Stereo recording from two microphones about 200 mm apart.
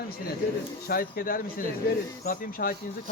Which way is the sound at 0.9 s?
50° left (ahead or behind).